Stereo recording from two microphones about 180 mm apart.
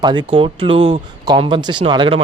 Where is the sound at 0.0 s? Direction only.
25° right (ahead or behind).